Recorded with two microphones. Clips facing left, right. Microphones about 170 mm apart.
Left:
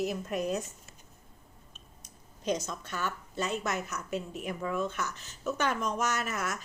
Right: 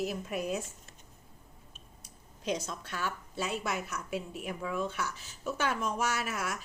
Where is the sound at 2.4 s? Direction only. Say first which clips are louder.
Left 2 dB; centre (ahead or behind).